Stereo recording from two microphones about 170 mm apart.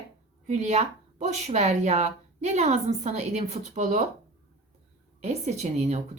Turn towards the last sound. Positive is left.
turn(degrees=-40)  # may be behind; listen again after turning